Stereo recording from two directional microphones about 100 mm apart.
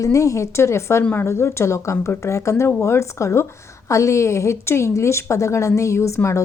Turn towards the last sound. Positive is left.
turn(degrees=30)  # may be behind; listen again after turning